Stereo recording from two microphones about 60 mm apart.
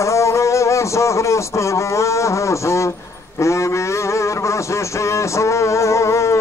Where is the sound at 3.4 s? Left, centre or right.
Left.